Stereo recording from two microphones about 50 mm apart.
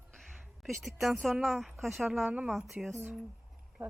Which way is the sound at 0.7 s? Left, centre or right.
Centre.